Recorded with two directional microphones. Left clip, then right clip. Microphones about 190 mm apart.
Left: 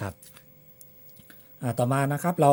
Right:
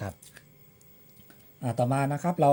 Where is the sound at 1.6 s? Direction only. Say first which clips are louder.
Left 1 dB; 25° left (ahead or behind).